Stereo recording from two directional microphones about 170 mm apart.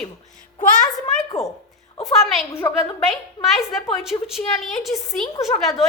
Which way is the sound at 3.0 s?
Centre (ahead or behind).